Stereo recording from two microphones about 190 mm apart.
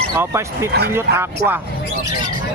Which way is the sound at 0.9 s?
10° right (ahead or behind).